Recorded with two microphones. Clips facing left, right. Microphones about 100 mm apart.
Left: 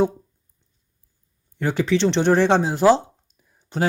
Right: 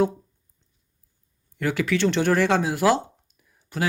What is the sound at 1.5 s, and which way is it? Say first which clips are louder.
Speech: left 3 dB; 25° left (ahead or behind).